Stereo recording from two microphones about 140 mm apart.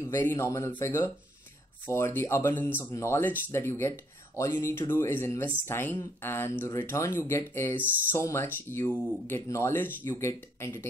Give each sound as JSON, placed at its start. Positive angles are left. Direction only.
{"t": 0.0, "sound": "speech", "side_deg": 20}